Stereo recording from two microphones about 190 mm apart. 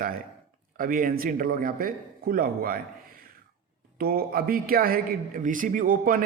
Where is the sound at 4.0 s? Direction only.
50° right (ahead or behind).